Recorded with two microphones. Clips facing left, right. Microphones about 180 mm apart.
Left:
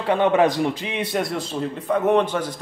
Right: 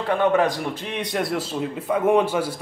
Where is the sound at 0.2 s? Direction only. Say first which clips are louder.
Left 2 dB; 20° left (ahead or behind).